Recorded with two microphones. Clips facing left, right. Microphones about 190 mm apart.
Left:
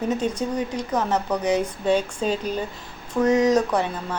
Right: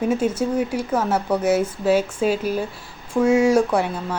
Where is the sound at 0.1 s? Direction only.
5° right (ahead or behind).